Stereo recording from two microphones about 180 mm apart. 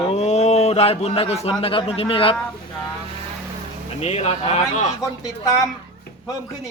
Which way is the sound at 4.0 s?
35° left (ahead or behind).